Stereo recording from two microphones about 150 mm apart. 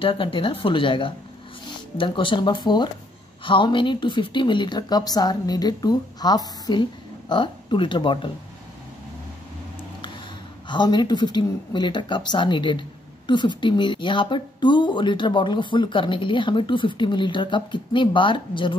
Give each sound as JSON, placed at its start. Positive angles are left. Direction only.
{"t": 0.0, "sound": "speech", "side_deg": 35}
{"t": 10.7, "sound": "speech", "side_deg": 30}